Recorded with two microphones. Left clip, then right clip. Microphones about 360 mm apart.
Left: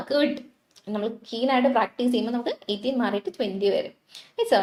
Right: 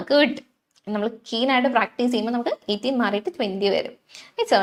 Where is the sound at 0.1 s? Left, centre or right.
Right.